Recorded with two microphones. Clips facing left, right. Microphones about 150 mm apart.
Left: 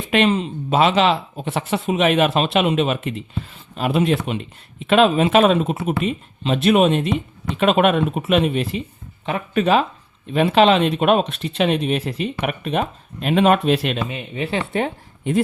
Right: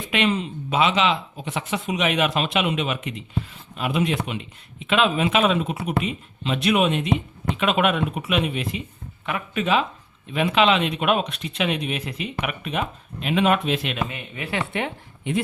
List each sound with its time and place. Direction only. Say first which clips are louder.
0.1 s speech: left 5 dB; 30° left (ahead or behind)
0.8 s speech: left 4 dB; 40° left (ahead or behind)
14.1 s speech: left 6 dB; 25° left (ahead or behind)
14.7 s a woman's voice: left 5 dB; 40° left (ahead or behind)